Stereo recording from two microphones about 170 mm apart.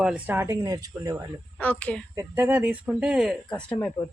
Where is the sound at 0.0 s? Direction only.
10° right (ahead or behind).